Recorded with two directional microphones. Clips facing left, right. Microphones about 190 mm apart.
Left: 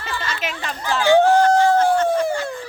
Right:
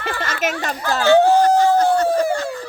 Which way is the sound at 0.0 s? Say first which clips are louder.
Right 4 dB; 50° right (ahead or behind).